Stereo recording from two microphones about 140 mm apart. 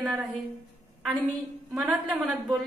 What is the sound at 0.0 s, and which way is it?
Speech, 5° right (ahead or behind).